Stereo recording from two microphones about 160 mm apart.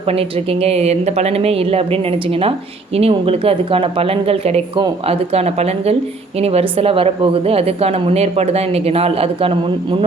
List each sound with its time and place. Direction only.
0.1 s a woman's voice: 40° right (ahead or behind)